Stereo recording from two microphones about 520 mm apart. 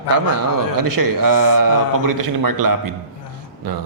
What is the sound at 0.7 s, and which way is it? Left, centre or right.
A man's voice, right.